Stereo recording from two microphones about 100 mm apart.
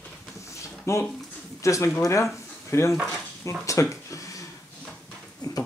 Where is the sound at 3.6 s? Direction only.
30° left (ahead or behind).